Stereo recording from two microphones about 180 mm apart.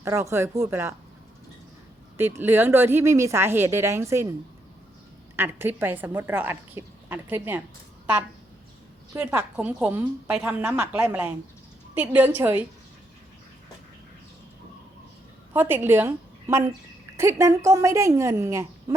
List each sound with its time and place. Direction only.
0.0 s a woman's voice: 15° right (ahead or behind)
2.1 s a woman's voice: 15° right (ahead or behind)
5.4 s a woman's voice: 10° right (ahead or behind)
9.1 s a woman's voice: 10° right (ahead or behind)
15.5 s a woman's voice: 10° right (ahead or behind)